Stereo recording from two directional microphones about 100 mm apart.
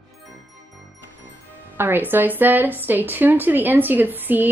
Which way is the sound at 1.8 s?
20° right (ahead or behind).